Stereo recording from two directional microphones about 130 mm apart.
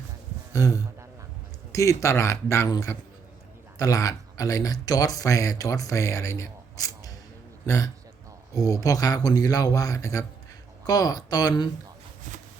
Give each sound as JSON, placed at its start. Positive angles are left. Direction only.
{"t": 0.5, "sound": "speech", "side_deg": 25}
{"t": 8.5, "sound": "speech", "side_deg": 25}